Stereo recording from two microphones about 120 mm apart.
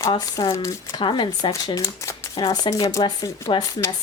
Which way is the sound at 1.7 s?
30° left (ahead or behind).